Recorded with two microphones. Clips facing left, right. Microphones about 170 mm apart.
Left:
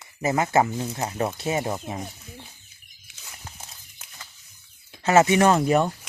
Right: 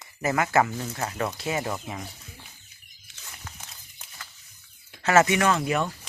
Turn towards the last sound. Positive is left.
turn(degrees=35)  # may be behind; listen again after turning